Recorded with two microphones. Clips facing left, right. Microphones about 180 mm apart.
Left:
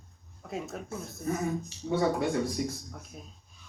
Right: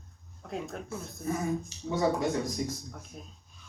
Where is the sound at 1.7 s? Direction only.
40° right (ahead or behind).